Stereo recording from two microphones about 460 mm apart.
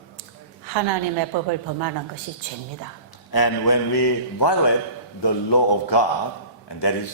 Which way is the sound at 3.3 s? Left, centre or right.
Left.